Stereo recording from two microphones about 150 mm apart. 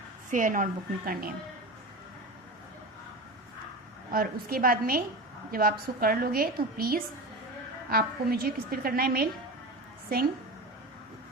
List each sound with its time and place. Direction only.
0.3 s a woman's voice: 60° right (ahead or behind); by 1.3 s 75° right (ahead or behind)
4.1 s a woman's voice: 80° right